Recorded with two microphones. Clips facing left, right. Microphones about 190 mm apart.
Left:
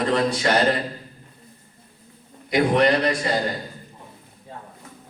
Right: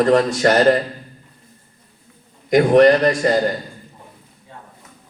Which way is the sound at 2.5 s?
45° right (ahead or behind).